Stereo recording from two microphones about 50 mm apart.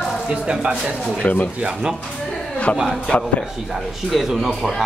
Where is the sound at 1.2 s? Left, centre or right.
Left.